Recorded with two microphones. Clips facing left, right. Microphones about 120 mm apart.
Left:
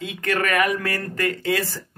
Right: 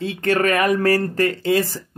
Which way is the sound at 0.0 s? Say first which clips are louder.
Right 5 dB; 30° right (ahead or behind).